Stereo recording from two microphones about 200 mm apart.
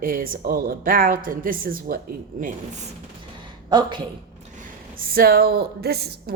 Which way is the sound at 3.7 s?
20° right (ahead or behind).